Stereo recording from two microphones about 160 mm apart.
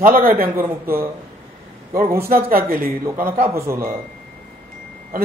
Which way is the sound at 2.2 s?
65° right (ahead or behind).